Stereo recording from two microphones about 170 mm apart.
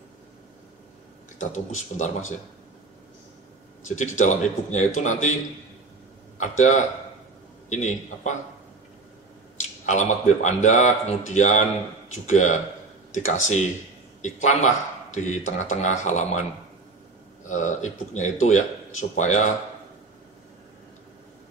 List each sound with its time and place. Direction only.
1.5 s speech: 45° left (ahead or behind)
3.8 s a man's voice: 45° left (ahead or behind)
9.8 s speech: 45° left (ahead or behind)
17.5 s speech: 45° left (ahead or behind)